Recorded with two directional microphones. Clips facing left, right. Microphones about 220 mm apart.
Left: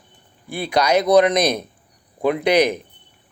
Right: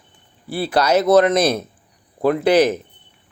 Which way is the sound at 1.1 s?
15° left (ahead or behind).